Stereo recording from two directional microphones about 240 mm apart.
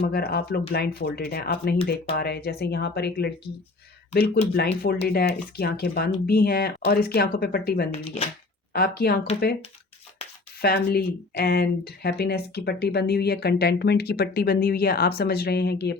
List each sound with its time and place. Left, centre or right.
0.0 s speech: left
4.5 s speech: left
7.9 s speech: left
8.7 s speech: left
10.6 s speech: left